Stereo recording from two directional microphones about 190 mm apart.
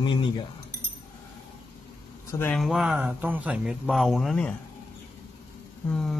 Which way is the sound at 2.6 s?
Centre (ahead or behind).